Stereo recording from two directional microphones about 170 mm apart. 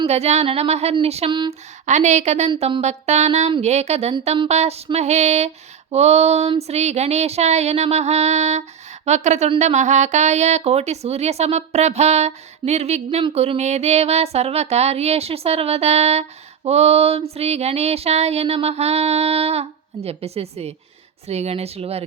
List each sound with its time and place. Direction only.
0.1 s speech: 40° right (ahead or behind)
1.9 s a woman's voice: 45° right (ahead or behind)